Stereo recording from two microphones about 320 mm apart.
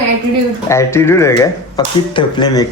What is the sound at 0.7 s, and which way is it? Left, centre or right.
Speech, centre.